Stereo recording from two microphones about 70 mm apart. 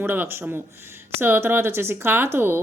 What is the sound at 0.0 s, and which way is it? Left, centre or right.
Speech, right.